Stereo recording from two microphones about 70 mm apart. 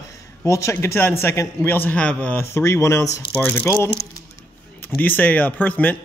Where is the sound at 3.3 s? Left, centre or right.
Left.